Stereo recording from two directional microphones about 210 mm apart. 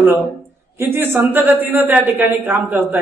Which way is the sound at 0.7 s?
10° right (ahead or behind).